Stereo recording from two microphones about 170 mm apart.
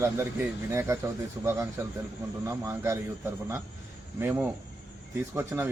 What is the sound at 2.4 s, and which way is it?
Speech, 15° right (ahead or behind).